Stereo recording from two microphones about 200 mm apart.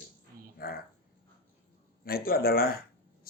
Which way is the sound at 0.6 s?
50° left (ahead or behind).